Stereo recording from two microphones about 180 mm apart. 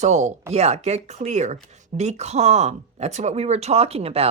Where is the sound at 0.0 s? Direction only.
40° right (ahead or behind).